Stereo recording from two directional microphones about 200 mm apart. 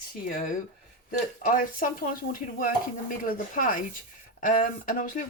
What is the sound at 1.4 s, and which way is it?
Speech, 45° left (ahead or behind).